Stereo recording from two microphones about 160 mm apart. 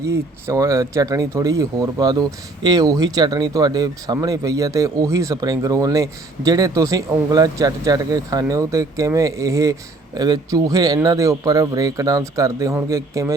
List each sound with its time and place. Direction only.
0.0 s speech: 20° right (ahead or behind)